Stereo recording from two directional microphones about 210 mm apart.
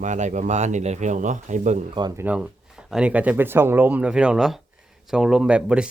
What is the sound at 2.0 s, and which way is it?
Speech, 20° right (ahead or behind).